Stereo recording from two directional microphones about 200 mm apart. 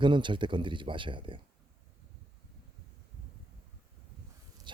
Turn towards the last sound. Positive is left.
turn(degrees=-25)  # may be behind; listen again after turning